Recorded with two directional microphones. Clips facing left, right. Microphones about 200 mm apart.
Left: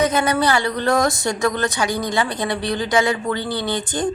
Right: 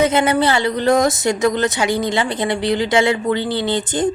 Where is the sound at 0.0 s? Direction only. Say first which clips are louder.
Right 3 dB; 25° right (ahead or behind).